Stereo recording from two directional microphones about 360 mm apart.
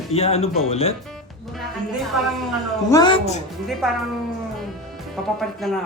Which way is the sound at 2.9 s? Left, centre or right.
Centre.